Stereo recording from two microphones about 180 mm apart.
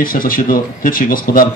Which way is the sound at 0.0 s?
50° left (ahead or behind).